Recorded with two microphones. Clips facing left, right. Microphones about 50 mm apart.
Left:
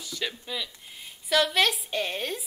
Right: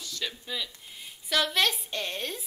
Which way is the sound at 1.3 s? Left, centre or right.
Centre.